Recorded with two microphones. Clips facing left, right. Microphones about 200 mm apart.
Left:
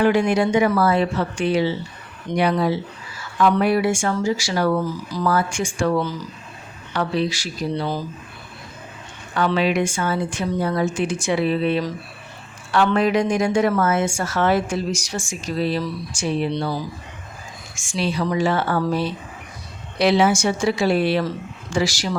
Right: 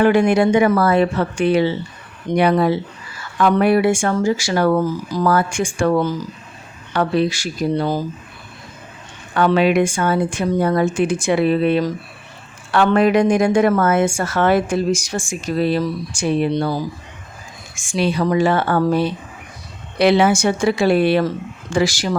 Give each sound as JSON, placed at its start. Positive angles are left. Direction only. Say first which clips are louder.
{"t": 0.0, "sound": "a woman's voice", "louder": "right 4 dB", "side_deg": -55}
{"t": 9.3, "sound": "a woman's voice", "louder": "right 5 dB", "side_deg": -55}
{"t": 17.7, "sound": "a woman's voice", "louder": "right 4 dB", "side_deg": -55}